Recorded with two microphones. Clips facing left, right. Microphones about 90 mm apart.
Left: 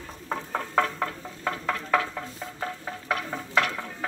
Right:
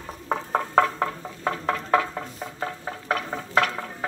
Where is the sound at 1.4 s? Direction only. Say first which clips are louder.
Right 3 dB; 20° right (ahead or behind).